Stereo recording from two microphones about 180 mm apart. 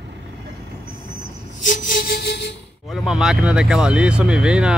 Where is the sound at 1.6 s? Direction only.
45° left (ahead or behind); by 2.5 s 65° left (ahead or behind).